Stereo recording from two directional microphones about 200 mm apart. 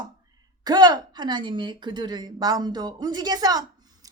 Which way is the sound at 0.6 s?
20° right (ahead or behind).